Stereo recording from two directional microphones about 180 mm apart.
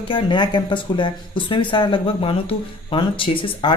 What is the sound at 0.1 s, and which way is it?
Speech, 25° left (ahead or behind).